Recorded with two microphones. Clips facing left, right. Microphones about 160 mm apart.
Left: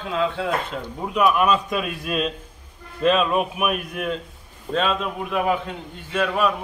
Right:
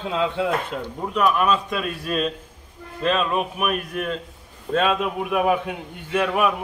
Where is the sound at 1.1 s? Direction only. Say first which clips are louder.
Left 1 dB; 10° left (ahead or behind).